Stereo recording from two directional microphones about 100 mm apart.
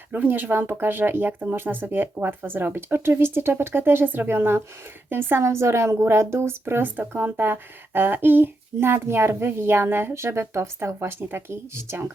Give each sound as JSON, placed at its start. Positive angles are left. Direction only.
{"t": 0.1, "sound": "a woman's voice", "side_deg": -20}